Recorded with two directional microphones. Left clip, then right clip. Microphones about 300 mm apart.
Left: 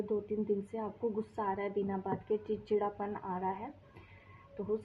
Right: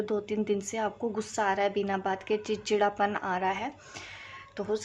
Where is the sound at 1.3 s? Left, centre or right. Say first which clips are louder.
Right 8 dB; right.